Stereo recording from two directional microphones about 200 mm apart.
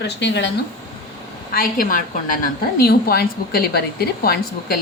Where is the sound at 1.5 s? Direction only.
45° left (ahead or behind).